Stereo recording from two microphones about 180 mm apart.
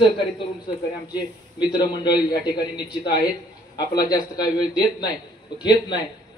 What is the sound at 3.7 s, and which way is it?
A man's voice, 20° left (ahead or behind).